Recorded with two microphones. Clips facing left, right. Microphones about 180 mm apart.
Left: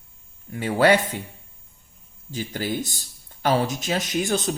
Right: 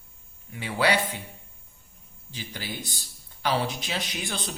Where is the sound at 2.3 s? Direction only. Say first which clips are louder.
Left 10 dB; 45° left (ahead or behind).